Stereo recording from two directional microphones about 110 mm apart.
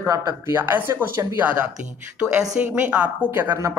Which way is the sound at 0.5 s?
20° right (ahead or behind).